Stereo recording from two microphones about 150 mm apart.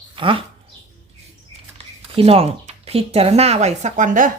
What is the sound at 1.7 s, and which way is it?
Speech, 40° right (ahead or behind).